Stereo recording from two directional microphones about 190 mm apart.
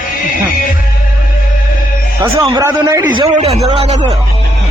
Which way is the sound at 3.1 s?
35° right (ahead or behind).